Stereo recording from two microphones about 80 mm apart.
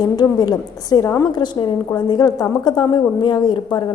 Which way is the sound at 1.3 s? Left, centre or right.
Left.